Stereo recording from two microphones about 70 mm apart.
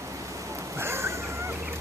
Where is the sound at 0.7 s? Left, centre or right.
Right.